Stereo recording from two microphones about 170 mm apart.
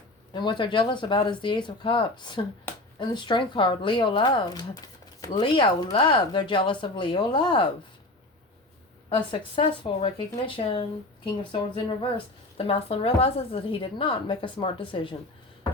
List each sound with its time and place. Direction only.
0.3 s speech: 25° left (ahead or behind)
9.0 s a woman's voice: 30° left (ahead or behind)